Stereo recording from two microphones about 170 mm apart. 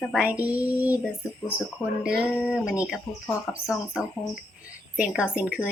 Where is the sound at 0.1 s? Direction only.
5° right (ahead or behind).